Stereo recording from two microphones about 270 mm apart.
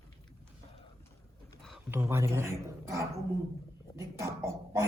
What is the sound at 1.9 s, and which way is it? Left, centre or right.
Speech, centre.